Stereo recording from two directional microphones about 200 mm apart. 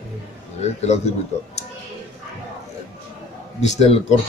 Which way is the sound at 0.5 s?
35° left (ahead or behind).